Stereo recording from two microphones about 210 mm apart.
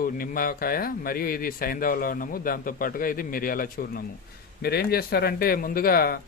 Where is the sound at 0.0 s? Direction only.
40° left (ahead or behind).